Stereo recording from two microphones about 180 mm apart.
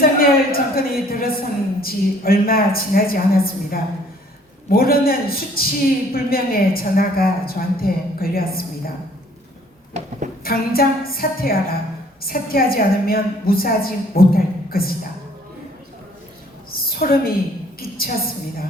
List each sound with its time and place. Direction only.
0.0 s a woman's voice: 55° left (ahead or behind)
10.4 s a woman's voice: 55° left (ahead or behind)
16.7 s a sound: 55° left (ahead or behind)